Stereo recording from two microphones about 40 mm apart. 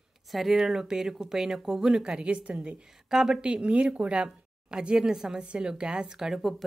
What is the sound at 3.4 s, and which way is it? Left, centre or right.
Speech, right.